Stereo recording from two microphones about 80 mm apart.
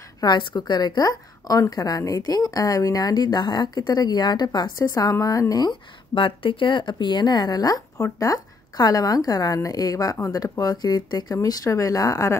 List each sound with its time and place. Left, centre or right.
0.2 s a woman's voice: left
5.7 s a woman's voice: left